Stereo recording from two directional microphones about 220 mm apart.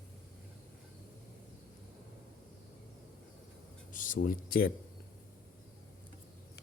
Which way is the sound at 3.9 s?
35° left (ahead or behind).